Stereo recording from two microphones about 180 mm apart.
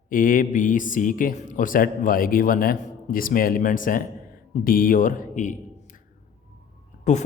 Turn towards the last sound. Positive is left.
turn(degrees=40)  # may be behind; listen again after turning